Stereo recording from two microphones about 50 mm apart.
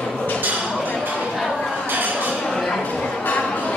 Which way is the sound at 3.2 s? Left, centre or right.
Left.